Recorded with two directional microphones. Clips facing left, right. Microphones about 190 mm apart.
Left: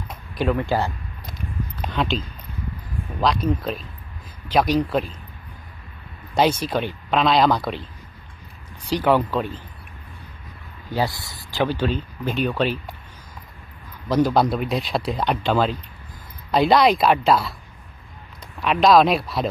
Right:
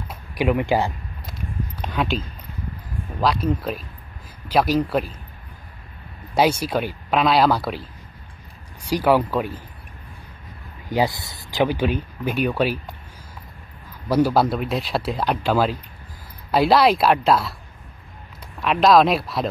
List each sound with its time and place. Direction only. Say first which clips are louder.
0.1 s speech: right 2 dB; 10° right (ahead or behind)
3.2 s speech: even; 5° right (ahead or behind)
6.3 s speech: right 1 dB; 10° right (ahead or behind)
10.9 s speech: right 3 dB; 15° right (ahead or behind)
14.0 s speech: even; 10° right (ahead or behind)
18.6 s speech: even; centre (ahead or behind)